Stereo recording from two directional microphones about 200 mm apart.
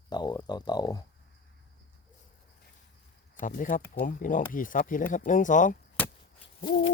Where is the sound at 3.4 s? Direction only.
40° left (ahead or behind).